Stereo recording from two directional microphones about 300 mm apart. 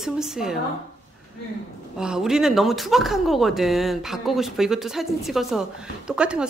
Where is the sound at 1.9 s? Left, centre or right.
Centre.